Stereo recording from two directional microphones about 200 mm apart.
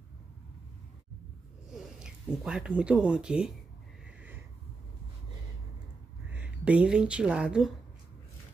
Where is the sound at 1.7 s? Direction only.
Centre (ahead or behind).